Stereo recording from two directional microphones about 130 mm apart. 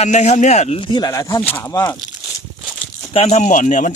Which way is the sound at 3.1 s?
55° left (ahead or behind).